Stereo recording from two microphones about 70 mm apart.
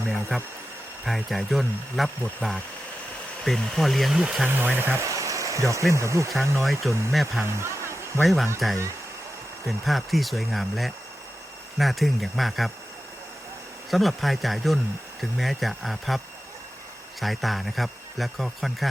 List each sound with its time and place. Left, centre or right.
0.3 s speech: centre
4.4 s speech: right
5.0 s a sound: right
5.9 s speech: right
7.1 s speech: centre
7.4 s a sound: right
8.2 s speech: centre
13.9 s speech: centre